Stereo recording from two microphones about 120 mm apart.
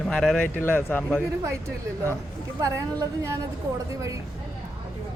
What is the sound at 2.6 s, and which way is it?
Speech, 30° right (ahead or behind).